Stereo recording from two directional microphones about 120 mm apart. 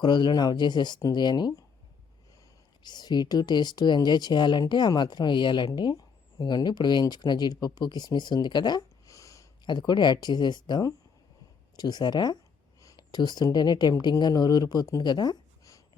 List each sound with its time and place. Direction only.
0.0 s speech: 40° left (ahead or behind)
2.8 s speech: 35° left (ahead or behind)
9.6 s speech: 40° left (ahead or behind)